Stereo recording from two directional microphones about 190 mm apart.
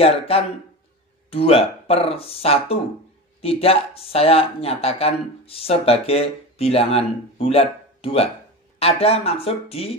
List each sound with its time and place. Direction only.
1.3 s speech: 30° left (ahead or behind)